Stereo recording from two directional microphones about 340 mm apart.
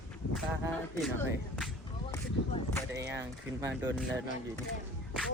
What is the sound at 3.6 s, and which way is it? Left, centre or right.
Speech, centre.